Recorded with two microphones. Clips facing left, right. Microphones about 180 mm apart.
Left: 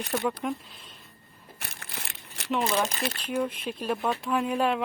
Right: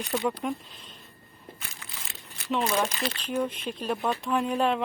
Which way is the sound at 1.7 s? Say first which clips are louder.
Left 3 dB; 65° left (ahead or behind).